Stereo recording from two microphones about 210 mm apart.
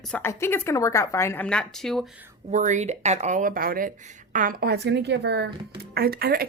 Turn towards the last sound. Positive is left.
turn(degrees=-45)  # may be behind; listen again after turning